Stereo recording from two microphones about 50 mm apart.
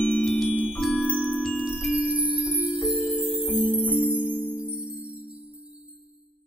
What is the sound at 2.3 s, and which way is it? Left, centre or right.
Music, right.